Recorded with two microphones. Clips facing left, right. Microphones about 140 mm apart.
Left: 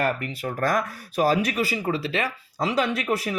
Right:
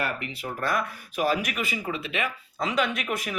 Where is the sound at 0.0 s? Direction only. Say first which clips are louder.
Left 5 dB; 40° left (ahead or behind).